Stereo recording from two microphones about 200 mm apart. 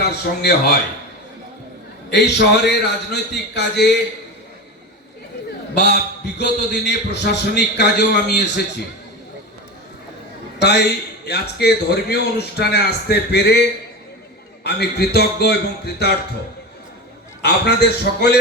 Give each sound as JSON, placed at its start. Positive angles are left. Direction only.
{"t": 0.0, "sound": "a man's voice", "side_deg": 55}
{"t": 2.0, "sound": "a man's voice", "side_deg": 55}
{"t": 5.7, "sound": "a man's voice", "side_deg": 55}
{"t": 10.6, "sound": "a man's voice", "side_deg": 55}
{"t": 17.4, "sound": "a man's voice", "side_deg": 55}